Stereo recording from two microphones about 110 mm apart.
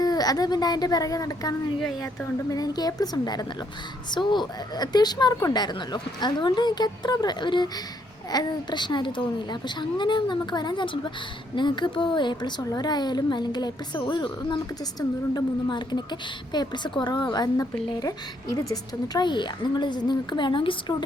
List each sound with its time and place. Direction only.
0.0 s speech: 35° left (ahead or behind)